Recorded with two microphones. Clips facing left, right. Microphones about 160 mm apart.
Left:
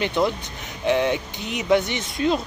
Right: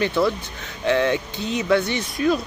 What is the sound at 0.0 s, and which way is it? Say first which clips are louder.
Speech: right 2 dB; 20° left (ahead or behind).